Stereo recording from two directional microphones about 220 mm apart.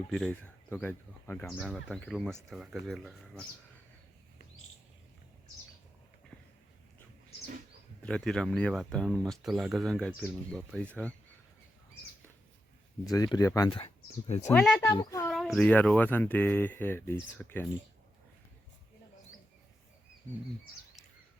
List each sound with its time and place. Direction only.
0.1 s speech: centre (ahead or behind)
8.0 s speech: 5° left (ahead or behind)
13.1 s speech: 15° left (ahead or behind)
14.4 s speech: 5° left (ahead or behind)
14.8 s speech: 15° left (ahead or behind)
15.3 s speech: centre (ahead or behind)